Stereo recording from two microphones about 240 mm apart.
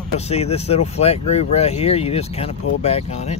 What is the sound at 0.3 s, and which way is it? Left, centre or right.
Speech, left.